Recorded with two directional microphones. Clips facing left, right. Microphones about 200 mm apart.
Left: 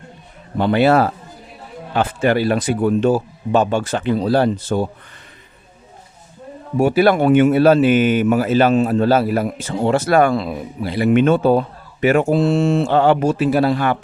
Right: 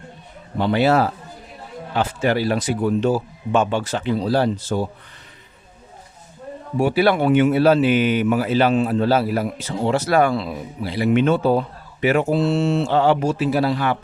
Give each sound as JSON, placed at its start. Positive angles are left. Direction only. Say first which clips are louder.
{"t": 0.6, "sound": "speech", "louder": "left 3 dB", "side_deg": 55}
{"t": 3.5, "sound": "speech", "louder": "left 3 dB", "side_deg": 40}
{"t": 6.7, "sound": "speech", "louder": "left 3 dB", "side_deg": 45}